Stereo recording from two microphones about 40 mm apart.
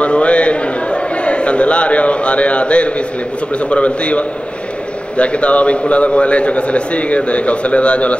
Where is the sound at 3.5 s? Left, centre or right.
Left.